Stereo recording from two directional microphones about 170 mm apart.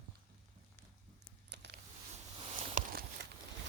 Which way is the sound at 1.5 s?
90° right.